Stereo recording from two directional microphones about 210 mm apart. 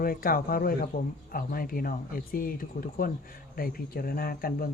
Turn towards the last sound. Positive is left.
turn(degrees=45)  # may be behind; listen again after turning